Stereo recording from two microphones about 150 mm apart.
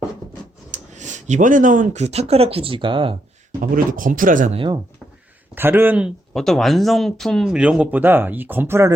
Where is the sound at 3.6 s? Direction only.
65° right (ahead or behind).